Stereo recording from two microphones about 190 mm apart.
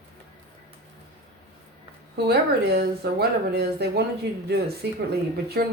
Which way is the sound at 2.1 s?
60° right (ahead or behind).